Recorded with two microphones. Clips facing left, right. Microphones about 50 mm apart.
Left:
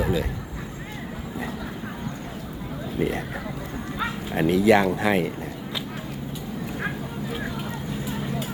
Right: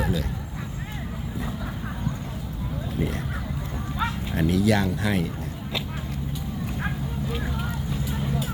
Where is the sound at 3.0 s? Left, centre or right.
Left.